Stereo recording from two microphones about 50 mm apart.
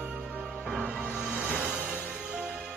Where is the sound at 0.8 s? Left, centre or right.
Centre.